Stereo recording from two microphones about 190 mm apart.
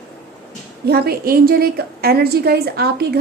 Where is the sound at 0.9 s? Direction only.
55° right (ahead or behind).